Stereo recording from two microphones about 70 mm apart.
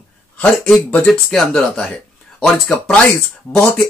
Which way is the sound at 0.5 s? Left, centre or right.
Centre.